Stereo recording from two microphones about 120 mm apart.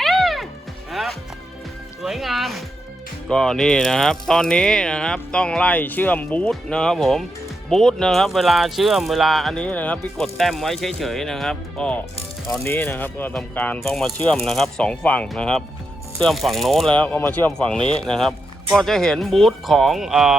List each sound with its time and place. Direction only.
0.0 s music: centre (ahead or behind)
2.0 s speech: centre (ahead or behind)
12.5 s speech: 20° left (ahead or behind)
13.7 s speech: centre (ahead or behind)